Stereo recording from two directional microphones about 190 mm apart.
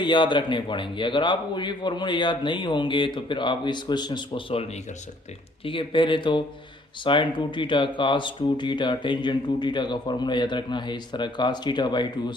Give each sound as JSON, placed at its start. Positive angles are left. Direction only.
{"t": 0.0, "sound": "speech", "side_deg": 25}
{"t": 5.6, "sound": "speech", "side_deg": 25}